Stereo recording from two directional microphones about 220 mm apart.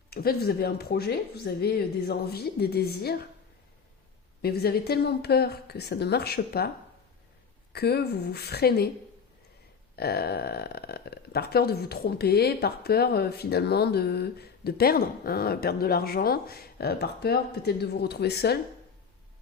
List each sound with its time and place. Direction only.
0.1 s speech: 45° left (ahead or behind)
4.4 s speech: 45° left (ahead or behind)
7.7 s speech: 45° left (ahead or behind)
9.9 s speech: 45° left (ahead or behind)